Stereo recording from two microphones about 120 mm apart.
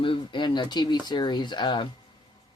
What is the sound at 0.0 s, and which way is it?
Speech, 45° left (ahead or behind).